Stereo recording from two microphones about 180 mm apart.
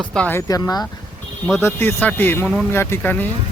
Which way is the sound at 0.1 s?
10° left (ahead or behind).